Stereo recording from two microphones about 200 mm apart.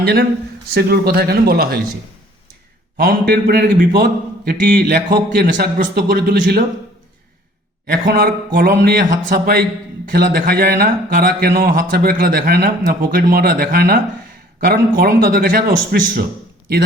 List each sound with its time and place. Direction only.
0.0 s speech: 50° right (ahead or behind)
3.0 s speech: 45° right (ahead or behind)
7.9 s speech: 50° right (ahead or behind)